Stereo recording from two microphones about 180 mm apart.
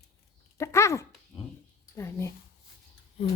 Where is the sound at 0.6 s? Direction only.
15° left (ahead or behind).